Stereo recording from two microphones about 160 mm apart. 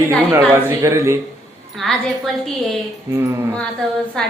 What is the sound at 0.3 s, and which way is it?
Speech, 15° right (ahead or behind).